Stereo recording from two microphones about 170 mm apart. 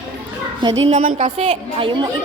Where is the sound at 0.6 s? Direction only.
25° right (ahead or behind).